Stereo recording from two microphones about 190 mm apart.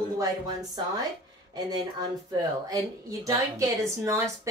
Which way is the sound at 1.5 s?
20° right (ahead or behind).